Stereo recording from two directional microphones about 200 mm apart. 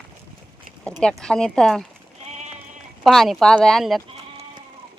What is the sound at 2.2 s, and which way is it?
Sheep, 35° right (ahead or behind).